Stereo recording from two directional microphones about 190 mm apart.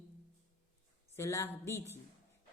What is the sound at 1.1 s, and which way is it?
Speech, 15° left (ahead or behind).